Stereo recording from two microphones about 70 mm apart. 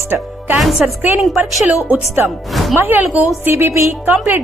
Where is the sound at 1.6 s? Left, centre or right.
Right.